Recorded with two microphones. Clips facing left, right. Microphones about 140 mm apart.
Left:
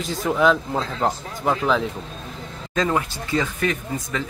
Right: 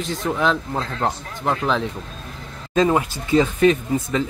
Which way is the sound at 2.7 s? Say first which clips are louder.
Right 4 dB; 20° right (ahead or behind).